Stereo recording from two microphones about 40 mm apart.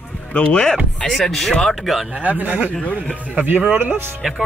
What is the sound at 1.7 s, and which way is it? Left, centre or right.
Speech, centre.